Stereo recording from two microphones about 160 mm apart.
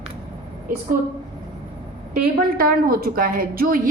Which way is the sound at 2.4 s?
65° right (ahead or behind).